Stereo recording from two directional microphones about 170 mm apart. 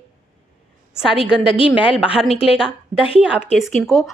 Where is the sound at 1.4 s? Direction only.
30° left (ahead or behind).